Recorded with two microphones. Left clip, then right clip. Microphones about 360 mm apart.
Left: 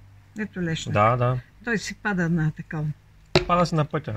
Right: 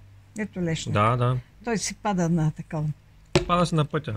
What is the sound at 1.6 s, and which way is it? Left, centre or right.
Speech, centre.